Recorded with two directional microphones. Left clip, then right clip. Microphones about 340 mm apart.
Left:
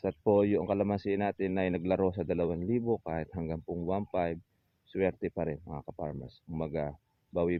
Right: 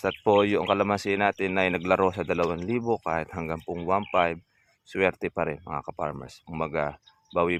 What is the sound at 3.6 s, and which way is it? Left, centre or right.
Speech, right.